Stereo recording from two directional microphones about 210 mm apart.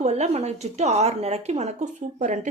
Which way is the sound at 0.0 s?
30° right (ahead or behind).